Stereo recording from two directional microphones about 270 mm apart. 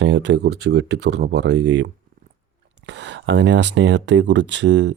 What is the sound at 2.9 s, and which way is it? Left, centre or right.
Speech, right.